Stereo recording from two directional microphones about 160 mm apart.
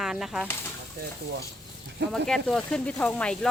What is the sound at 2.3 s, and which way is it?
Speech, 5° left (ahead or behind).